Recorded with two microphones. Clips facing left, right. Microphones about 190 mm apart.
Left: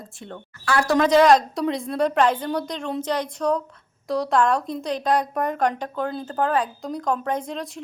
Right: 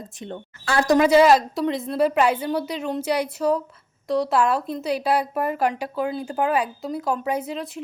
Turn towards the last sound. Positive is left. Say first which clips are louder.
# right 1 dB
turn(degrees=0)  # may be behind; listen again after turning